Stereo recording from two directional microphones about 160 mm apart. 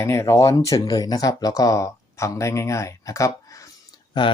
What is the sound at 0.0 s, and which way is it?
Speech, 15° left (ahead or behind).